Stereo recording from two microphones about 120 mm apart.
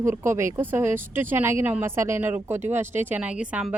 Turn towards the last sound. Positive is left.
turn(degrees=-10)  # may be behind; listen again after turning